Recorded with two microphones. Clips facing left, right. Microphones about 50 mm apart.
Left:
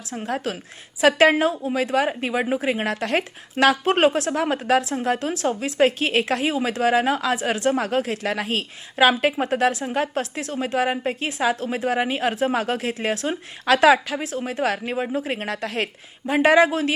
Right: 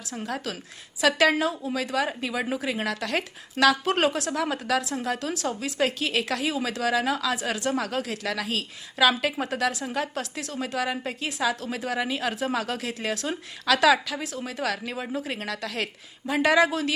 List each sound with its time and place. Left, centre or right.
0.1 s a woman's voice: left